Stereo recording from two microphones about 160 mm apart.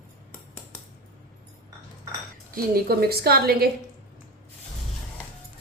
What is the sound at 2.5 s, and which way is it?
A woman's voice, 75° right (ahead or behind).